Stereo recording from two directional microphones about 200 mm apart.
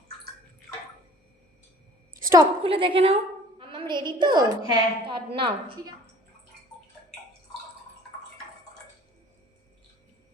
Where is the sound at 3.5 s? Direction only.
25° right (ahead or behind).